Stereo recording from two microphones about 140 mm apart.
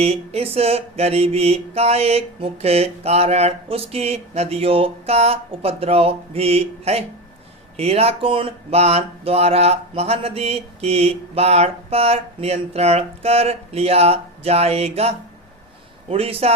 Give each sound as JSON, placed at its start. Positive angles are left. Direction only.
{"t": 0.0, "sound": "speech", "side_deg": -45}